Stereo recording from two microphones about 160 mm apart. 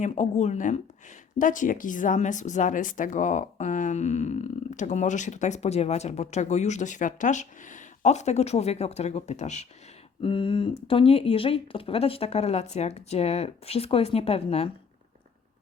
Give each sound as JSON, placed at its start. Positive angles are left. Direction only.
{"t": 0.0, "sound": "speech", "side_deg": 45}
{"t": 10.2, "sound": "speech", "side_deg": 30}